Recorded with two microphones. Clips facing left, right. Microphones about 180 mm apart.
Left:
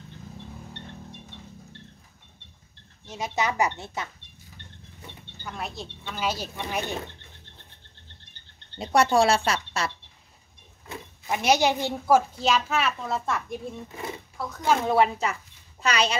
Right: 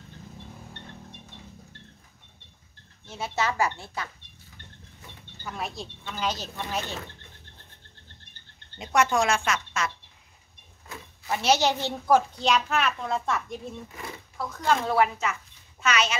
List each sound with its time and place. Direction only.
3.1 s speech: 15° left (ahead or behind)
5.4 s speech: centre (ahead or behind); by 7.1 s 15° left (ahead or behind)
8.7 s speech: 35° left (ahead or behind)
10.9 s speech: 15° left (ahead or behind)
12.2 s speech: 5° left (ahead or behind)
14.3 s a sound: centre (ahead or behind)
14.6 s speech: 20° left (ahead or behind)
15.8 s speech: 35° left (ahead or behind)